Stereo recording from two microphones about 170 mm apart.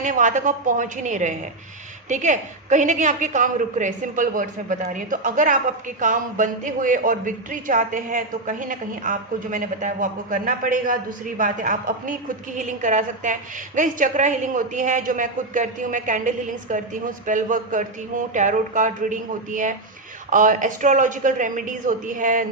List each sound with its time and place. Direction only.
0.0 s a woman's voice: 50° right (ahead or behind)